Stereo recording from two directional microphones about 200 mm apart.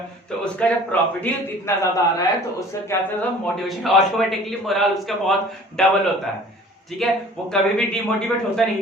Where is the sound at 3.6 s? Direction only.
Centre (ahead or behind).